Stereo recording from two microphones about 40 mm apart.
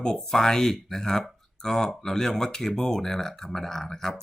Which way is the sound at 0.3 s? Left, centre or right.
Centre.